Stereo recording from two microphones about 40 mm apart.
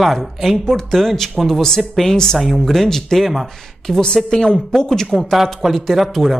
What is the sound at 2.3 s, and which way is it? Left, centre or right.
Speech, centre.